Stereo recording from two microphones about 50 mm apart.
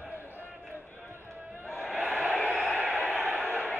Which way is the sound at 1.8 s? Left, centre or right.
Centre.